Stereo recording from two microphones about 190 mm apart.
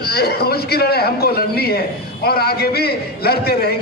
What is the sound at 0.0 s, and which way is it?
A man's voice, 55° left (ahead or behind).